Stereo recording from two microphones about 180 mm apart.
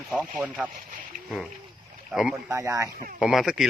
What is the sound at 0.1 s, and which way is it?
Speech, centre (ahead or behind).